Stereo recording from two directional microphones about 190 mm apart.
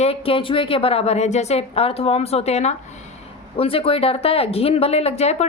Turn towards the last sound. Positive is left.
turn(degrees=35)  # may be behind; listen again after turning